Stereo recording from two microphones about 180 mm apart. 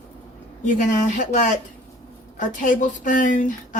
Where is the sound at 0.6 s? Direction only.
45° left (ahead or behind).